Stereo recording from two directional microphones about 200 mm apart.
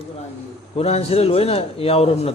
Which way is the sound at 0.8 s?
30° left (ahead or behind).